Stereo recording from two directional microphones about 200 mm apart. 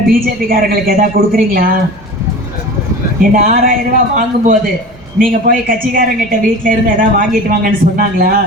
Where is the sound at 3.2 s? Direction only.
45° right (ahead or behind).